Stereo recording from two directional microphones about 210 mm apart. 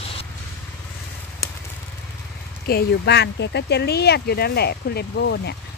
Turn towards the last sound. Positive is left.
turn(degrees=55)  # may be behind; listen again after turning